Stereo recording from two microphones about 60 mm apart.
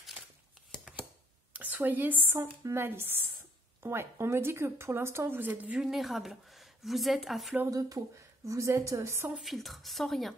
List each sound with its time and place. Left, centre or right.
1.5 s a sound: right
2.6 s speech: right
5.8 s speech: centre
8.5 s a woman's voice: right
9.4 s speech: centre